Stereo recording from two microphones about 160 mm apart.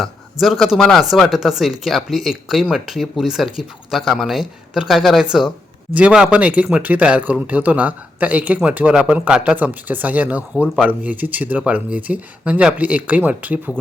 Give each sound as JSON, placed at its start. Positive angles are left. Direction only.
{"t": 0.0, "sound": "speech", "side_deg": 0}